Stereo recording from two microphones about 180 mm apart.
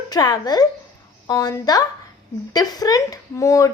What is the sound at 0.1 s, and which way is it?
Speech, 20° left (ahead or behind).